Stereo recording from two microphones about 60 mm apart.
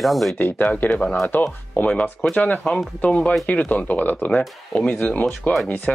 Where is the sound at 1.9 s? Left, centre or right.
Centre.